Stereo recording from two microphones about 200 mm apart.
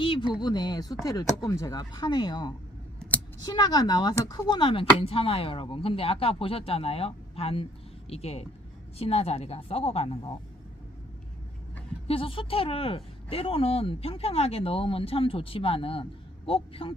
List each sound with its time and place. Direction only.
0.0 s speech: 25° left (ahead or behind)
12.0 s speech: 30° left (ahead or behind)